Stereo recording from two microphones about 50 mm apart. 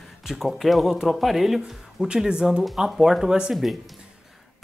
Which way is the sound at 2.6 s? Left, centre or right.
Centre.